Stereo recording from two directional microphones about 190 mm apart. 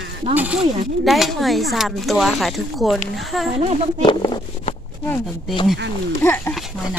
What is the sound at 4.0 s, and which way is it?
Speech, 25° left (ahead or behind).